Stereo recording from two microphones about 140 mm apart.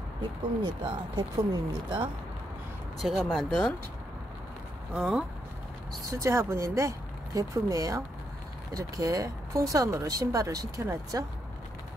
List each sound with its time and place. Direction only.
0.8 s speech: 30° right (ahead or behind)
3.0 s speech: centre (ahead or behind)
4.9 s speech: centre (ahead or behind)
6.0 s speech: 20° right (ahead or behind)